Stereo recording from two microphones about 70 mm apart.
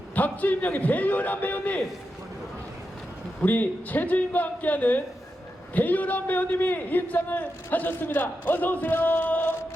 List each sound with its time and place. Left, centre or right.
0.1 s a man's voice: left
3.4 s a man's voice: left